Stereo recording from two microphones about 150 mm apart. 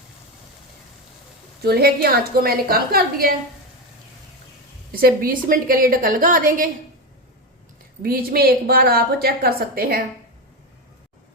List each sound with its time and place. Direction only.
1.6 s a woman's voice: 90° right
4.9 s a woman's voice: 80° right
8.0 s a woman's voice: 90° right